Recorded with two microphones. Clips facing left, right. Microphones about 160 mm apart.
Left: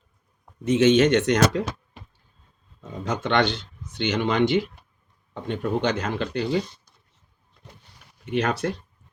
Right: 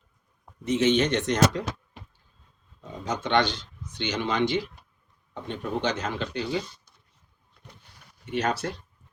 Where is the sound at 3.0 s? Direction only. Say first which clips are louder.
Left 2 dB; 60° left (ahead or behind).